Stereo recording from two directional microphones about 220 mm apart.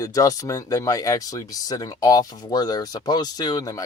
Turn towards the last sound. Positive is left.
turn(degrees=15)  # may be behind; listen again after turning